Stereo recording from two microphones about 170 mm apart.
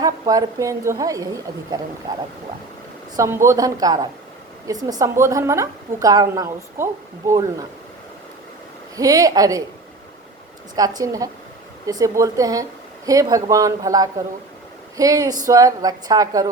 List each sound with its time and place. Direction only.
0.0 s a woman's voice: 20° right (ahead or behind)
3.2 s a woman's voice: 15° right (ahead or behind)
9.0 s a woman's voice: 20° right (ahead or behind)
10.8 s a woman's voice: 20° right (ahead or behind)